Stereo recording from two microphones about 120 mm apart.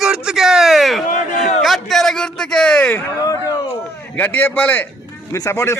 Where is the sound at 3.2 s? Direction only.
25° left (ahead or behind).